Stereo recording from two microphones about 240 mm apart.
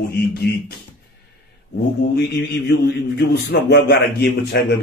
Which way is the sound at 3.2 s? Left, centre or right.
Left.